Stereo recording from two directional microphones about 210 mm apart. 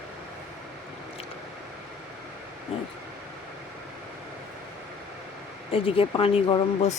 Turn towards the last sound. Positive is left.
turn(degrees=25)  # may be behind; listen again after turning